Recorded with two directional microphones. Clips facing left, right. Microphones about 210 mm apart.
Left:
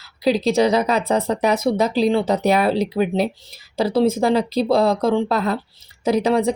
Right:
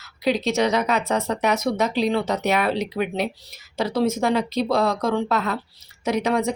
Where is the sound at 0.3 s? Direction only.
35° left (ahead or behind).